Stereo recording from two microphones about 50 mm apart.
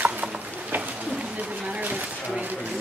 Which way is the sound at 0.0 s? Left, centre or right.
Right.